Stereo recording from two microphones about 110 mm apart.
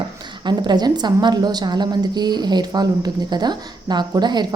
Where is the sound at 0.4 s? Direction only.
40° right (ahead or behind).